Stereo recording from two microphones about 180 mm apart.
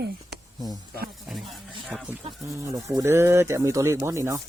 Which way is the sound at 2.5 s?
15° right (ahead or behind).